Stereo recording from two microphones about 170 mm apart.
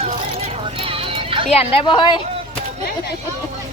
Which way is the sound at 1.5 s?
35° left (ahead or behind).